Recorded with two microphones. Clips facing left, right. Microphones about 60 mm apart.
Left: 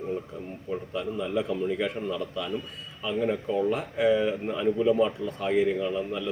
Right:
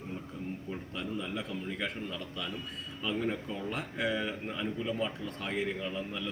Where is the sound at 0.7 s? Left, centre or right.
Centre.